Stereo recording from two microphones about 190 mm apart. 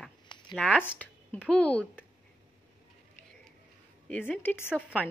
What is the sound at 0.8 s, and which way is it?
A woman's voice, 10° left (ahead or behind).